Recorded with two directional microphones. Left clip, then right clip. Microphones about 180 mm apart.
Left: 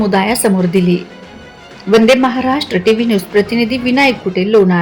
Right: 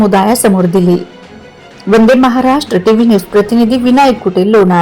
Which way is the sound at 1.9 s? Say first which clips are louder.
Right 1 dB; 5° left (ahead or behind).